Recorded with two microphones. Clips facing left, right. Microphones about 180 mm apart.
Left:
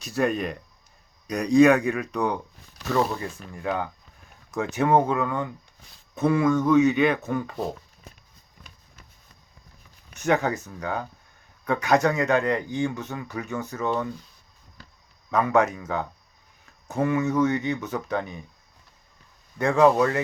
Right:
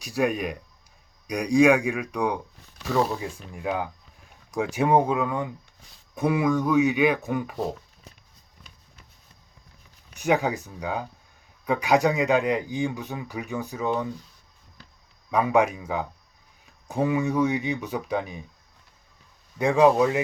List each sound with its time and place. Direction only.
0.0 s speech: 10° right (ahead or behind)
8.1 s run: 50° left (ahead or behind)
10.2 s speech: 15° right (ahead or behind)
15.3 s speech: 10° right (ahead or behind)
19.5 s speech: 15° right (ahead or behind)